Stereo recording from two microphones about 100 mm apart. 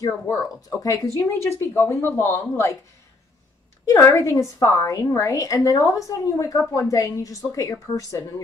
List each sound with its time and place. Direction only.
0.0 s speech: 35° left (ahead or behind)
4.0 s a woman's voice: 30° left (ahead or behind)